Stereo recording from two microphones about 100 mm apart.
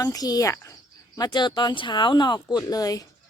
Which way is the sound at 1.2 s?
50° left (ahead or behind).